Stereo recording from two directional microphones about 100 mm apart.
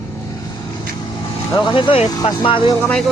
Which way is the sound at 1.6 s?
55° left (ahead or behind).